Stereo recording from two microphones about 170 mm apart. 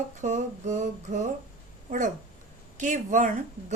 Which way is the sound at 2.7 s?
50° right (ahead or behind).